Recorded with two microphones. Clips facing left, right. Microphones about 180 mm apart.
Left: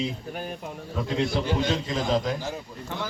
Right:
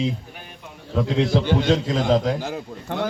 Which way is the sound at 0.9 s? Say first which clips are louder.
Right 6 dB; 70° right (ahead or behind).